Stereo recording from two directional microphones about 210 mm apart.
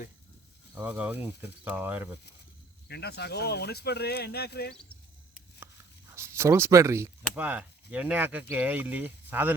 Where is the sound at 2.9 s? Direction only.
50° left (ahead or behind).